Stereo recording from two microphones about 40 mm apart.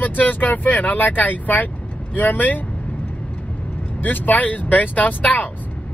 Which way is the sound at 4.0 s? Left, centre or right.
Left.